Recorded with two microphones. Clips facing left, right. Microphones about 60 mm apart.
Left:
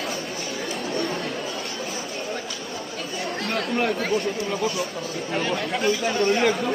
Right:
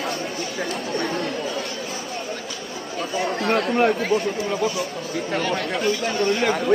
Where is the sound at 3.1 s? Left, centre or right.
Centre.